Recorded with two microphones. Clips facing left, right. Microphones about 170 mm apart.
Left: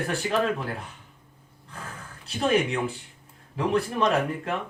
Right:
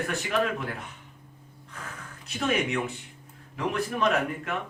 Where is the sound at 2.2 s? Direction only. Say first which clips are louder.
Left 4 dB; 30° left (ahead or behind).